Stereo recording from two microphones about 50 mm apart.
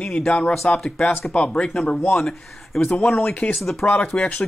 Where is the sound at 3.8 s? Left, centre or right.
Left.